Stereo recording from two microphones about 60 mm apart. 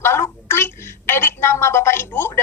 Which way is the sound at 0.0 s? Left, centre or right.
Left.